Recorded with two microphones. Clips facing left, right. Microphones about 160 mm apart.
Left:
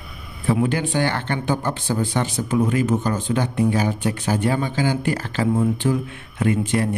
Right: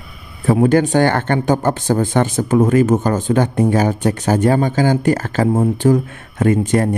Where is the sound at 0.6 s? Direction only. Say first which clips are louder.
Right 8 dB; 45° right (ahead or behind).